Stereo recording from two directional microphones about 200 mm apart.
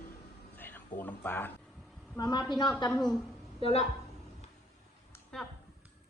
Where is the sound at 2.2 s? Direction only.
20° left (ahead or behind).